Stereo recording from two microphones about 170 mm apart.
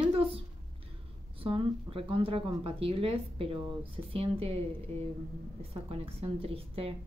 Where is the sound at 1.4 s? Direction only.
30° right (ahead or behind).